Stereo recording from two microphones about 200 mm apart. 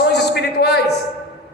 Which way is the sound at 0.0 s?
55° left (ahead or behind).